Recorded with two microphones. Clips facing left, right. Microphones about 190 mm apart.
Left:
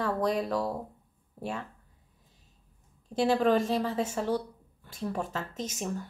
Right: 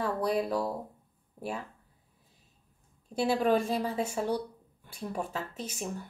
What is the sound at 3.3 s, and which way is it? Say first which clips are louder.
Speech: left 2 dB; 10° right (ahead or behind).